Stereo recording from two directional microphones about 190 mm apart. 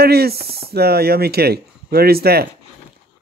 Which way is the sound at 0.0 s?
55° right (ahead or behind).